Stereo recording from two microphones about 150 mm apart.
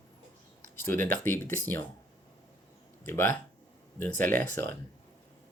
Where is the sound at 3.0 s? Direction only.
15° left (ahead or behind).